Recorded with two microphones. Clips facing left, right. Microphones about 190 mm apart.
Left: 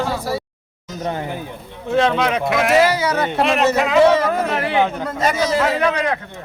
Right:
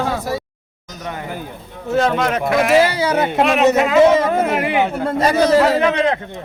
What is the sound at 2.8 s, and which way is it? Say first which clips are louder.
Speech: right 1 dB; 30° right (ahead or behind).